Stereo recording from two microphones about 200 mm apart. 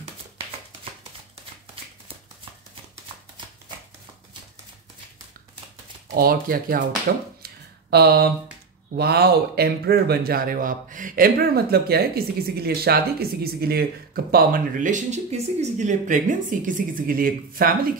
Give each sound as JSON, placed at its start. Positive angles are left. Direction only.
{"t": 6.1, "sound": "speech", "side_deg": -45}
{"t": 7.4, "sound": "a sound", "side_deg": -55}
{"t": 8.9, "sound": "speech", "side_deg": -55}